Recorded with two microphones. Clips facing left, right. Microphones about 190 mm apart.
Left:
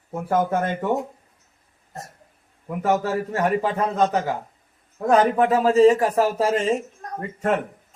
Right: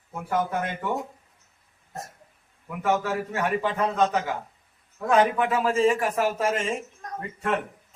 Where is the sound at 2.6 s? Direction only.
40° left (ahead or behind).